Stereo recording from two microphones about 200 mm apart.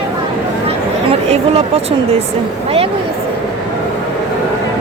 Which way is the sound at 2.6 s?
30° right (ahead or behind).